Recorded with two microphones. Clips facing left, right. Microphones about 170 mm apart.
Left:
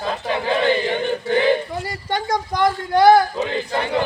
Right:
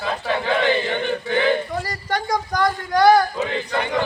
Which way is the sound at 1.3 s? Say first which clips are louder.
Left 3 dB; 30° left (ahead or behind).